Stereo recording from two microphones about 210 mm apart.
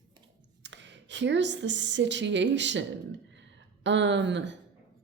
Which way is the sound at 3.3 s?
60° right (ahead or behind).